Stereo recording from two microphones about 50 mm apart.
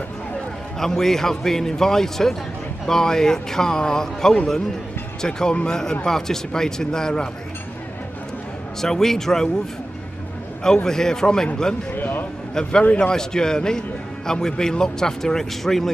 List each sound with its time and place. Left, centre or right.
0.7 s a man's voice: centre
8.8 s a man's voice: centre
10.6 s a man's voice: centre
11.9 s a sound: left
13.0 s a man's voice: centre